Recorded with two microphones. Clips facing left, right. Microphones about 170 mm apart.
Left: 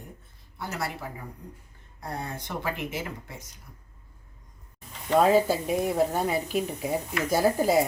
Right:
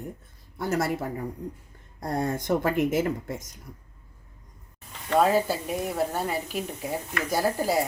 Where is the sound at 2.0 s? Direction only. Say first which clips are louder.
Right 7 dB; 45° right (ahead or behind).